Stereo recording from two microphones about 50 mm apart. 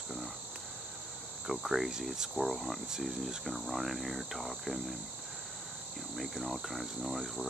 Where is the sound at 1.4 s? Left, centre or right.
Centre.